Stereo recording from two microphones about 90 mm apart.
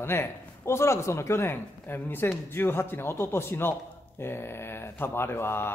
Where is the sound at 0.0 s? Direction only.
25° left (ahead or behind).